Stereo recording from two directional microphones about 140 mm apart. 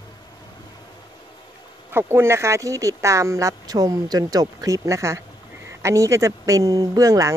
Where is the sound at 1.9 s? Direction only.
15° right (ahead or behind).